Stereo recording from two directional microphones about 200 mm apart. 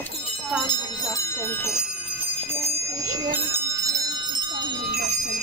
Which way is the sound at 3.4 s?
15° right (ahead or behind).